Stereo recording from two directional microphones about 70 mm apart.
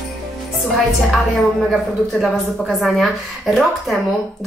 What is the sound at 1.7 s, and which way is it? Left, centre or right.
Speech, centre.